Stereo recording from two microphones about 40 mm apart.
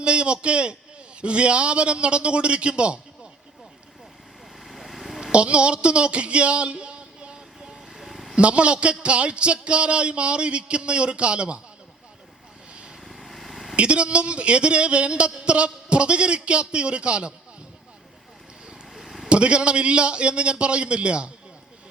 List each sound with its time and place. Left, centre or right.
0.0 s a man's voice: right
4.6 s vehicle: centre
5.3 s a sound: right
7.9 s vehicle: centre
8.4 s speech: right
13.1 s vehicle: centre
13.7 s speech: right
18.9 s vehicle: centre
19.3 s speech: right